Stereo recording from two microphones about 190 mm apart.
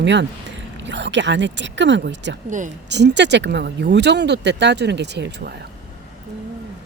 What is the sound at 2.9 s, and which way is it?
Speech, 65° right (ahead or behind).